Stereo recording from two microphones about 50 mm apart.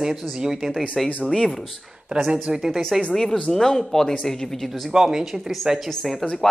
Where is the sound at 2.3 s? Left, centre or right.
Centre.